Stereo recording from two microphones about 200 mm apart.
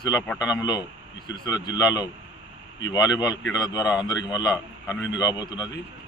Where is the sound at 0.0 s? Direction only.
20° left (ahead or behind).